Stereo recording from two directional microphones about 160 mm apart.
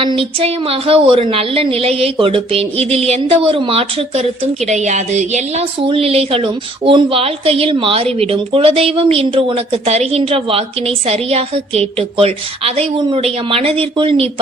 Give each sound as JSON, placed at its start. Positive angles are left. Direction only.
{"t": 0.0, "sound": "speech", "side_deg": -35}